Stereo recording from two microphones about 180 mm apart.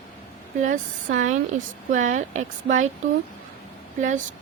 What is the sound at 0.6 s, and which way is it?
Speech, 45° right (ahead or behind).